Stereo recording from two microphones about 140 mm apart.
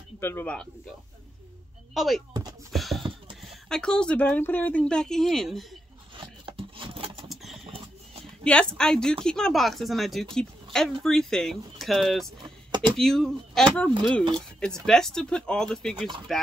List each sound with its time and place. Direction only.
0.2 s speech: 15° left (ahead or behind)
2.0 s speech: centre (ahead or behind)
2.7 s clip-clop: centre (ahead or behind)
3.4 s speech: 5° left (ahead or behind)
6.1 s a sound: 35° right (ahead or behind)
8.5 s speech: 5° left (ahead or behind)
12.4 s a sound: 35° right (ahead or behind)
12.9 s speech: 5° left (ahead or behind)